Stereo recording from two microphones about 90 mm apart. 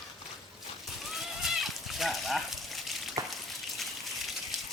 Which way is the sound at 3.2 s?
40° right (ahead or behind).